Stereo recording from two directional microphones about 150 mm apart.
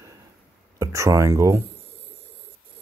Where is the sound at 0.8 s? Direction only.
20° right (ahead or behind).